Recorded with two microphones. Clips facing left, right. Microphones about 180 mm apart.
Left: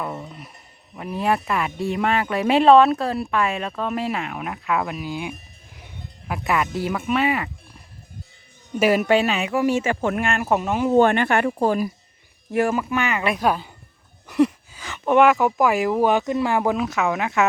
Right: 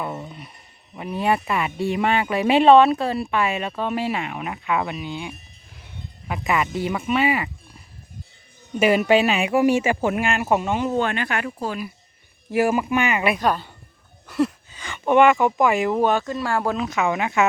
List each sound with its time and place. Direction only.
0.0 s a sound: 5° right (ahead or behind)
0.9 s speech: centre (ahead or behind)
9.0 s speech: 5° right (ahead or behind)
10.9 s speech: 50° left (ahead or behind)
12.5 s speech: 5° right (ahead or behind)
13.4 s a woman's voice: 10° left (ahead or behind)
16.7 s speech: 5° left (ahead or behind)